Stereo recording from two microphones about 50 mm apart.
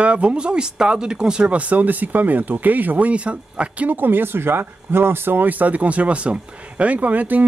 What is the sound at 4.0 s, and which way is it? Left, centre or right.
Speech, right.